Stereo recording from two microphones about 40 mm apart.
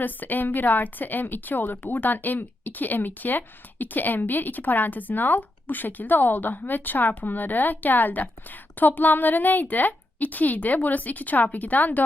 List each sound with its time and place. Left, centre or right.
0.0 s a woman's voice: left